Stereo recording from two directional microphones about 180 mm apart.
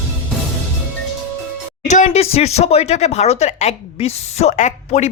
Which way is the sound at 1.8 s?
40° left (ahead or behind).